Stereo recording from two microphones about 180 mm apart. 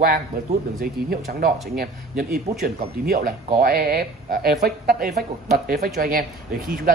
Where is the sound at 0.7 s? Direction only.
55° right (ahead or behind).